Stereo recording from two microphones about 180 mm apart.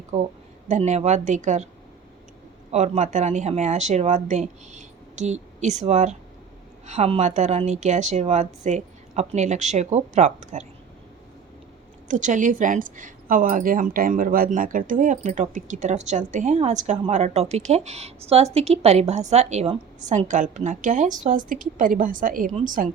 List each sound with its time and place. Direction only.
0.1 s a woman's voice: 35° right (ahead or behind)
2.7 s a woman's voice: 40° right (ahead or behind)
12.0 s a woman's voice: 45° right (ahead or behind)